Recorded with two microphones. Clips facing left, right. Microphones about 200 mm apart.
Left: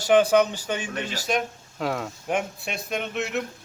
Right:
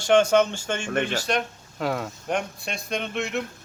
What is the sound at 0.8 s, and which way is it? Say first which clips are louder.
Speech: right 6 dB; 65° right (ahead or behind).